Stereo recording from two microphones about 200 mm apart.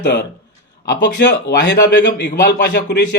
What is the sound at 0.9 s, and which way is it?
A man's voice, 55° left (ahead or behind).